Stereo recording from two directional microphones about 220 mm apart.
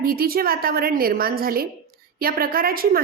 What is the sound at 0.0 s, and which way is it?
A woman's voice, 45° right (ahead or behind).